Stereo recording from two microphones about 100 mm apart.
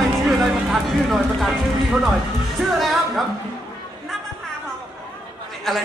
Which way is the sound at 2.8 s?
Centre (ahead or behind).